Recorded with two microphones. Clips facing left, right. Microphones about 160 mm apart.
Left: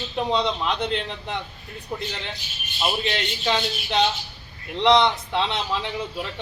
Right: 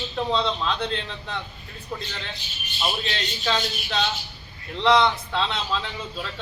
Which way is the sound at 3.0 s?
20° left (ahead or behind).